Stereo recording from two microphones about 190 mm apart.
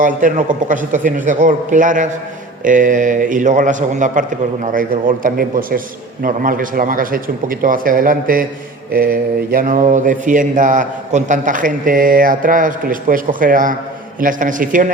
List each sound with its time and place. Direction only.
0.0 s speech: 45° right (ahead or behind)